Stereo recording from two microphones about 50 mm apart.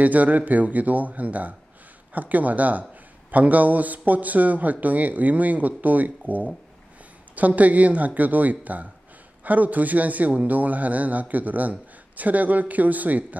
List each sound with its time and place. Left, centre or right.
0.0 s a man's voice: right